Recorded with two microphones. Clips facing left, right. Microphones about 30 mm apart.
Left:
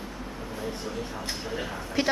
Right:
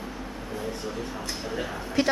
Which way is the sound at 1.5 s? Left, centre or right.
Centre.